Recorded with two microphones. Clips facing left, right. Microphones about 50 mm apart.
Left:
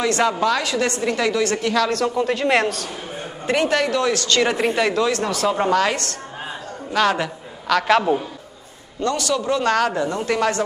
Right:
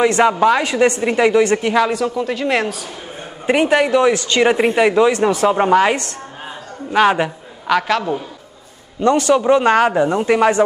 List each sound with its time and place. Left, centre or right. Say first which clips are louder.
0.0 s speech: right 6 dB; right
1.9 s a woman's voice: right 1 dB; centre
3.4 s a man's voice: right 5 dB; centre
7.8 s a woman's voice: left 2 dB; centre
9.0 s speech: right 8 dB; right